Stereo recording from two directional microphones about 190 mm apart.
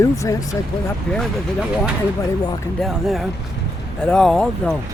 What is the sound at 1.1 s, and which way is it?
Speech, 5° left (ahead or behind).